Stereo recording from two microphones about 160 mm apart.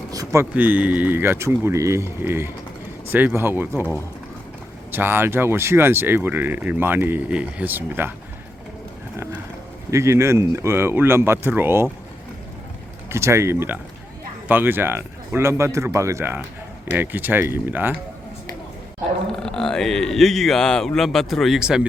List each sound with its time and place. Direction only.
0.1 s speech: 20° right (ahead or behind)
0.5 s speech: 10° right (ahead or behind)
4.9 s speech: 15° right (ahead or behind)
9.1 s speech: 15° right (ahead or behind)
13.1 s speech: 15° right (ahead or behind)
19.3 s speech: 5° left (ahead or behind)